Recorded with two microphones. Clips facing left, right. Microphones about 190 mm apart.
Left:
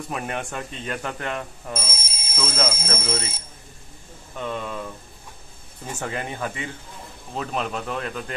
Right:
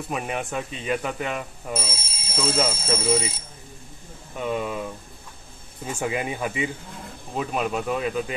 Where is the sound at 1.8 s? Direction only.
45° left (ahead or behind).